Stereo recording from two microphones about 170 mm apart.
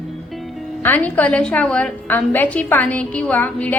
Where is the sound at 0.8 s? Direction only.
10° left (ahead or behind).